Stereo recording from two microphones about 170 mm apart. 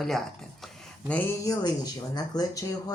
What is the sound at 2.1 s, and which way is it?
Speech, 25° left (ahead or behind).